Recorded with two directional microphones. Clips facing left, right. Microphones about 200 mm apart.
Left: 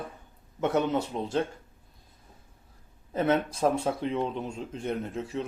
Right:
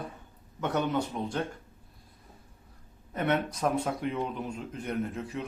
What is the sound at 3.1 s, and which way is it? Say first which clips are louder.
Speech: left 3 dB; 30° left (ahead or behind).